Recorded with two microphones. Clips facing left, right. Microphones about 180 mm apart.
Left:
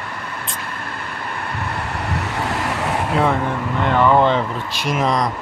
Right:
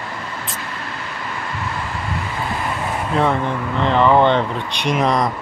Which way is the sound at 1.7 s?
65° left (ahead or behind).